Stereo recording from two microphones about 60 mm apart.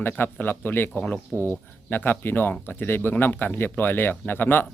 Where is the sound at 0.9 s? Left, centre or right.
Left.